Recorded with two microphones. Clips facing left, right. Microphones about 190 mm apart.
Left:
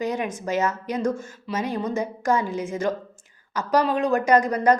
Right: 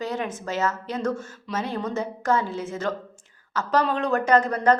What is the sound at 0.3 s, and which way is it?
A woman's voice, 15° left (ahead or behind).